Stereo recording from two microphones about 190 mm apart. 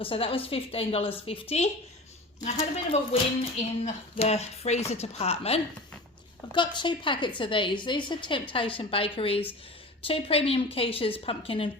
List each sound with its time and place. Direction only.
0.0 s a woman's voice: 30° left (ahead or behind)